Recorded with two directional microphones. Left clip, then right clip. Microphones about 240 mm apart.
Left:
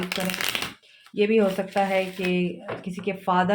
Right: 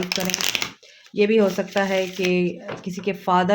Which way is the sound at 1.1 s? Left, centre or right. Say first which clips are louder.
Right 3 dB; right.